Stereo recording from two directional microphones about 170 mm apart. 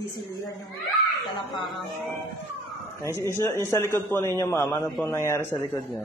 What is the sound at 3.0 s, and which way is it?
A man's voice, 15° left (ahead or behind).